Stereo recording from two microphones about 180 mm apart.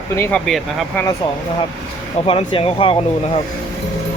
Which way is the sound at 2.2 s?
30° left (ahead or behind).